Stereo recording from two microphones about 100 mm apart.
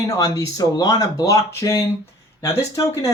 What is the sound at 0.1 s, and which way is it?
Speech, 35° left (ahead or behind).